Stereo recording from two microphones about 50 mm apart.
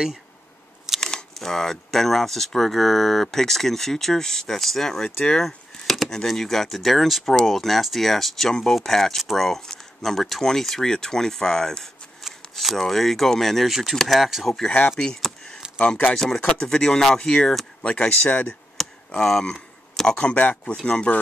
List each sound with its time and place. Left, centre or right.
1.0 s speech: centre
15.9 s speech: left
17.9 s speech: left
19.1 s a sound: centre
20.2 s speech: left